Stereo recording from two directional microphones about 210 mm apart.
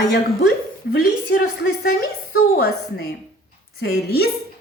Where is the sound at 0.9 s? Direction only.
45° left (ahead or behind).